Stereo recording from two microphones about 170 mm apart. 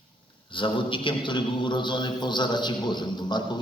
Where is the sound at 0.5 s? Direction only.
30° left (ahead or behind).